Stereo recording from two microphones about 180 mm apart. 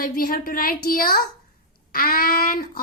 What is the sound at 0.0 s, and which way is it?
A woman's voice, 50° left (ahead or behind).